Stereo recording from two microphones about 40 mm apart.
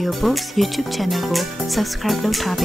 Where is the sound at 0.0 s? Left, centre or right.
Centre.